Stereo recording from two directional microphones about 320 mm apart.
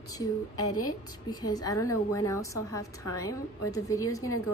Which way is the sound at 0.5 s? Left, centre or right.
Left.